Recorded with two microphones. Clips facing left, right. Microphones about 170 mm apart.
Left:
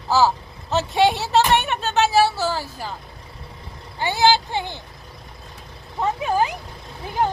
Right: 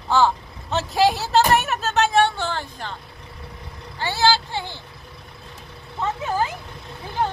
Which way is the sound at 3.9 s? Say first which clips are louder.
Left 2 dB; 15° left (ahead or behind).